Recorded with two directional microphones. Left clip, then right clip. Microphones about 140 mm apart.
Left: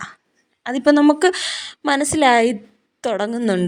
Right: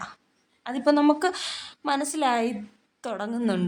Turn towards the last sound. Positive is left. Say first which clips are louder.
# left 8 dB
turn(degrees=45)  # may be behind; listen again after turning